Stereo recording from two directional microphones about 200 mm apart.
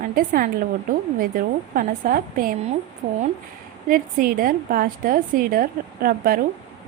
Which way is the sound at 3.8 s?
45° right (ahead or behind).